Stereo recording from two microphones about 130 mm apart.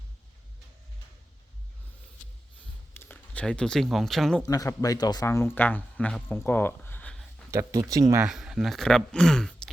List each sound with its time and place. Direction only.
2.9 s speech: 15° left (ahead or behind)
4.4 s speech: 25° left (ahead or behind)
7.1 s a sound: 5° left (ahead or behind)
7.5 s speech: 25° right (ahead or behind)
8.2 s speech: 5° right (ahead or behind)